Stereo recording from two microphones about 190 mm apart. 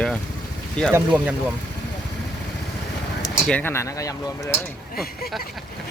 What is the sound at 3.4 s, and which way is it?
Speech, 10° left (ahead or behind).